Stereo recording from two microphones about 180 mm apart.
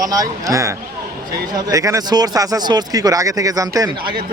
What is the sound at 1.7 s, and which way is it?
Speech, 20° right (ahead or behind).